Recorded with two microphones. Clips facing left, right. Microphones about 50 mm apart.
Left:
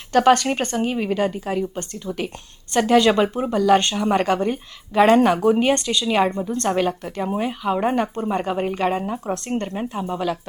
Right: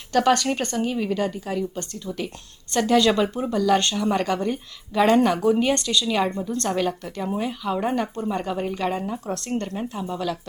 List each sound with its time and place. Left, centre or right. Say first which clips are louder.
0.1 s a woman's voice: left 4 dB; left